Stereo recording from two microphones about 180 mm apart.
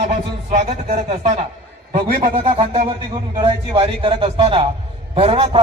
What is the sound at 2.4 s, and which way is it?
A man's voice, 30° right (ahead or behind).